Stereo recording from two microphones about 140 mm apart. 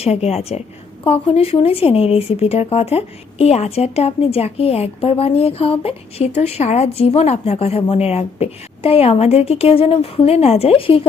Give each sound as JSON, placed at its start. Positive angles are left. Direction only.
{"t": 0.0, "sound": "speech", "side_deg": 50}